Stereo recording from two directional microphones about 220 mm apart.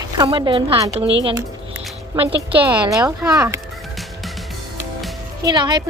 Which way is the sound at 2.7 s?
15° right (ahead or behind).